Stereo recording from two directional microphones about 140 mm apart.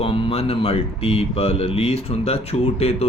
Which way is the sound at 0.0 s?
45° left (ahead or behind).